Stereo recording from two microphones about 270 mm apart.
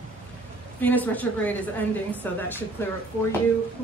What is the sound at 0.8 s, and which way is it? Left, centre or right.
Speech, centre.